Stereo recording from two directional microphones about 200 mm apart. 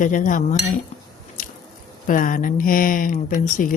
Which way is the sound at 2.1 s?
45° left (ahead or behind).